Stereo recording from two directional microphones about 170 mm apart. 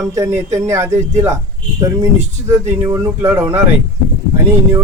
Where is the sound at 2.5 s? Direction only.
15° right (ahead or behind).